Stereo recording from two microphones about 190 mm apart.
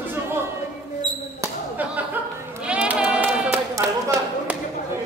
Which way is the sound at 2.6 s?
5° right (ahead or behind).